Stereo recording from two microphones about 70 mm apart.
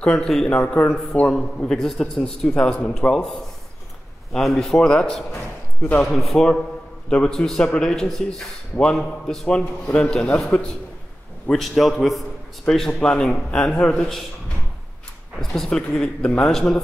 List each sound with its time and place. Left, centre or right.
0.0 s a man's voice: centre
1.6 s a man's voice: centre
2.5 s a man's voice: centre
6.0 s a man's voice: centre
15.3 s a man's voice: centre